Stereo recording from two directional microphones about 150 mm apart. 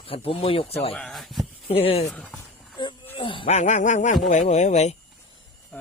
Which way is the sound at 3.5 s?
55° left (ahead or behind).